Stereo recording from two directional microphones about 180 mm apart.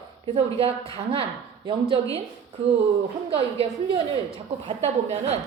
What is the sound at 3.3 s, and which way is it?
Speech, 30° right (ahead or behind).